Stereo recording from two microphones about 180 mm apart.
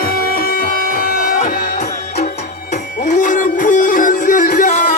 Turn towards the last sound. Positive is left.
turn(degrees=45)  # may be behind; listen again after turning